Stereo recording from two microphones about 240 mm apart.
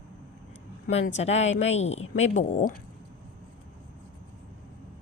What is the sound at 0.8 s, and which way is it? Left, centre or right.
Speech, left.